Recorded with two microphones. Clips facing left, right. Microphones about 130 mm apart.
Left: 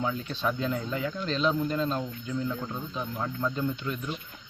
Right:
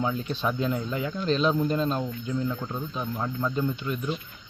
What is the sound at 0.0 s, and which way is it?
Speech, 15° right (ahead or behind).